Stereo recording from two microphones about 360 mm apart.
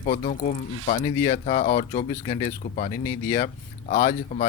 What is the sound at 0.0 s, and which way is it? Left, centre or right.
Speech, left.